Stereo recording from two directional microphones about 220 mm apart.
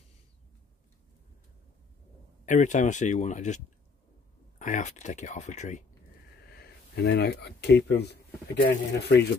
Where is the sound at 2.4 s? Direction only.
35° left (ahead or behind).